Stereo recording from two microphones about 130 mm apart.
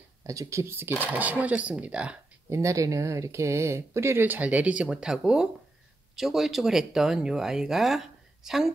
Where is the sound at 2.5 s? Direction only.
25° right (ahead or behind).